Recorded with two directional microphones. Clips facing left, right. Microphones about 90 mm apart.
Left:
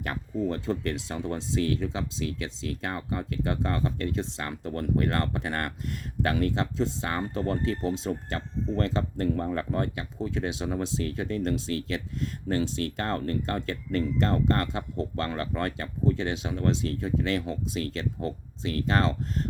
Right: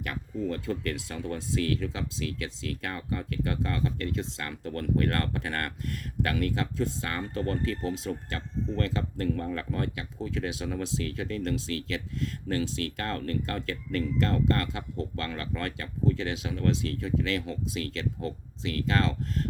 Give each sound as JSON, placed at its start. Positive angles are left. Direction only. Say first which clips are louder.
{"t": 0.0, "sound": "speech", "louder": "left 3 dB", "side_deg": 30}